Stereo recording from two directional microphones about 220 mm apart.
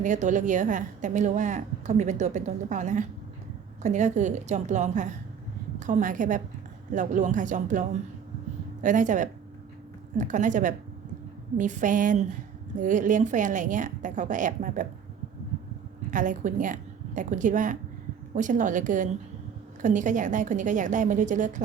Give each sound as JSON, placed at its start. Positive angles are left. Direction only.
{"t": 0.0, "sound": "a woman's voice", "side_deg": -35}
{"t": 16.1, "sound": "a woman's voice", "side_deg": -35}